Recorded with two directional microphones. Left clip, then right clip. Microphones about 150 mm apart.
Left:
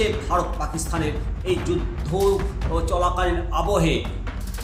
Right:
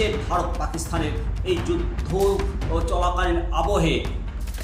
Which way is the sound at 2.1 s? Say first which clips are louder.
Left 1 dB; 10° left (ahead or behind).